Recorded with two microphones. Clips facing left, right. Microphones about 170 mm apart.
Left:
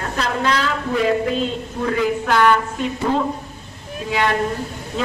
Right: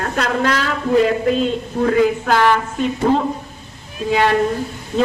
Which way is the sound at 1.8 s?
40° right (ahead or behind).